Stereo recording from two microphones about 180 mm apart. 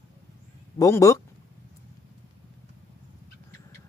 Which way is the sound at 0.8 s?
15° left (ahead or behind).